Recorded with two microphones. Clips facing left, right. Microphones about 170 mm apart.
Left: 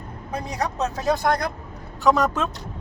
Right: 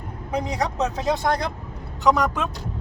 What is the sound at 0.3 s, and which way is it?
A man's voice, 15° right (ahead or behind).